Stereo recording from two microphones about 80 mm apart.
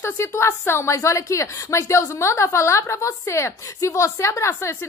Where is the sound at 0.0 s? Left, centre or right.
Left.